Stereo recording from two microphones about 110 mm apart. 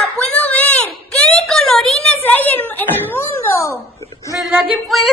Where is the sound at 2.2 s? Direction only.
15° left (ahead or behind).